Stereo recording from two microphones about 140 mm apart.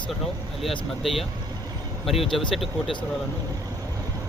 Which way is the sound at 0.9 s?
Centre (ahead or behind).